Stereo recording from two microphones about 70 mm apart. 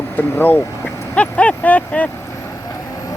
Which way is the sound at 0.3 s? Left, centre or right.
Left.